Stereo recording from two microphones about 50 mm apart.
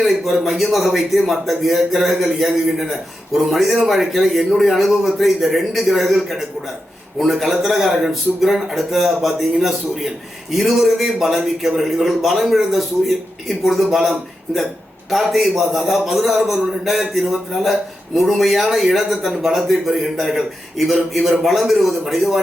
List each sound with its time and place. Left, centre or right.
0.0 s a man's voice: centre